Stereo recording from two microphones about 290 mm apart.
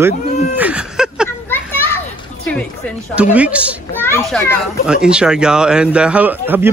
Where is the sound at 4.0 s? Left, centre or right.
Centre.